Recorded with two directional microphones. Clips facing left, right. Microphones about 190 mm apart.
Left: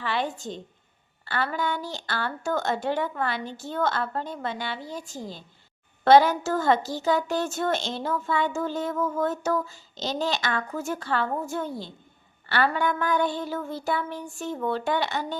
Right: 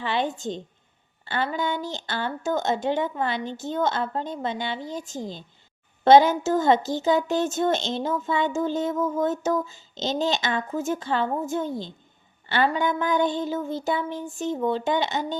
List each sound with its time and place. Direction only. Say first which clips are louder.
0.0 s speech: right 3 dB; 25° right (ahead or behind)